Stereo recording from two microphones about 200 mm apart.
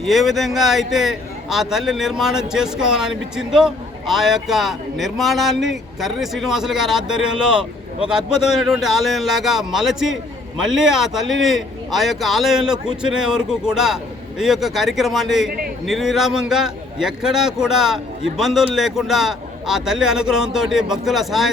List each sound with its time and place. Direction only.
0.0 s speech: centre (ahead or behind)